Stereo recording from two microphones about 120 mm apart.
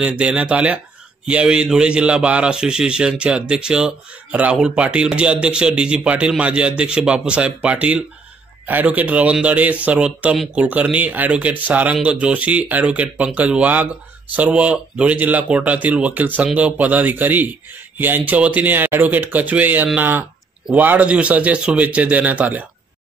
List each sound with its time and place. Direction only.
0.0 s a man's voice: 10° right (ahead or behind)